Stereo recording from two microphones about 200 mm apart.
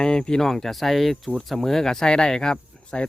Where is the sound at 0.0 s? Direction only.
5° left (ahead or behind).